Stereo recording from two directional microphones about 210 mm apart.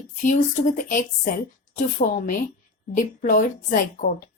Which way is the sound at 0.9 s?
40° left (ahead or behind).